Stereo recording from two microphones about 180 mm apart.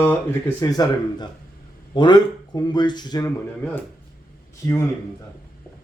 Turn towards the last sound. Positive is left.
turn(degrees=15)  # may be behind; listen again after turning